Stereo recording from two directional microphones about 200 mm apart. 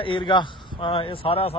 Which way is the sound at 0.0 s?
25° left (ahead or behind).